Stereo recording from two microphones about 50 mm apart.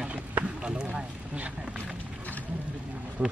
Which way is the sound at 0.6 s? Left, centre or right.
Centre.